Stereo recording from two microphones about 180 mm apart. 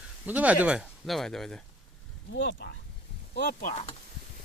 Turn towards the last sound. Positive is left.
turn(degrees=35)  # may be behind; listen again after turning